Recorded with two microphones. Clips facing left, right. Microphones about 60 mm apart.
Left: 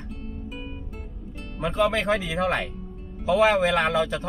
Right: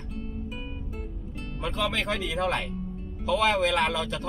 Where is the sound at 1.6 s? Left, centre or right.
Left.